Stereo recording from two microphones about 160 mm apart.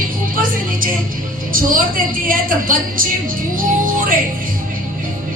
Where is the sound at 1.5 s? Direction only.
60° right (ahead or behind).